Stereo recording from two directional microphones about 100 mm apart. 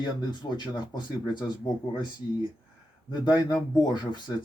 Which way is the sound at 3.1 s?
45° left (ahead or behind).